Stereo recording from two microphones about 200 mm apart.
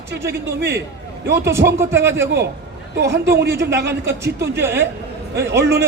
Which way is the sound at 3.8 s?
10° right (ahead or behind).